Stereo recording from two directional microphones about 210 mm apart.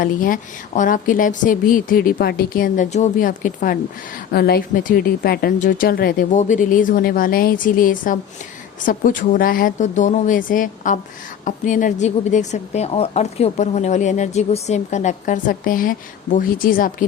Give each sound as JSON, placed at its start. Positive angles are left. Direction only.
{"t": 0.0, "sound": "a woman's voice", "side_deg": 40}